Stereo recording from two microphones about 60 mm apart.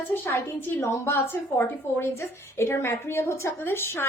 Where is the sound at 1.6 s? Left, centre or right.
Left.